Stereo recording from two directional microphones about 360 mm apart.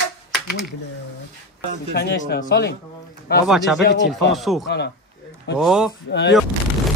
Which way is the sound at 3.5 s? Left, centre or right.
Centre.